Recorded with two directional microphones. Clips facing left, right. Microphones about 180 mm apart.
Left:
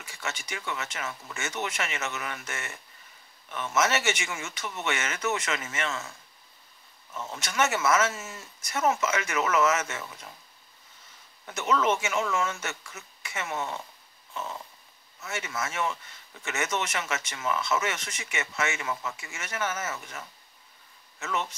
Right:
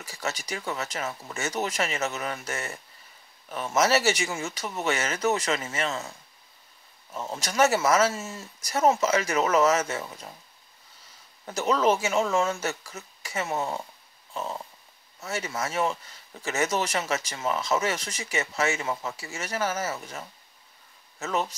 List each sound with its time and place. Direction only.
0.0 s speech: 35° right (ahead or behind)
7.2 s speech: 35° right (ahead or behind)
11.4 s speech: 35° right (ahead or behind)
14.3 s dog: 35° right (ahead or behind)
15.1 s speech: 35° right (ahead or behind)